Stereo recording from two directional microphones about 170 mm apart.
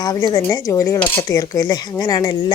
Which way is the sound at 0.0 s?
20° left (ahead or behind).